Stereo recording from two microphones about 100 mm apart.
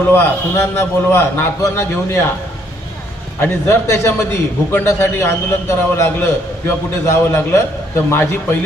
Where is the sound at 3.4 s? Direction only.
25° left (ahead or behind).